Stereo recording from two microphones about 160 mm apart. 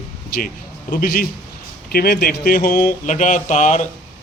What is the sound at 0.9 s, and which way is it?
Speech, 65° left (ahead or behind).